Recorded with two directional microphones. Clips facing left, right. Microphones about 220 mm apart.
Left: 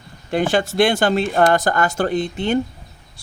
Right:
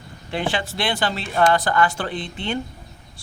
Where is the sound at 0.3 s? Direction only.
45° left (ahead or behind).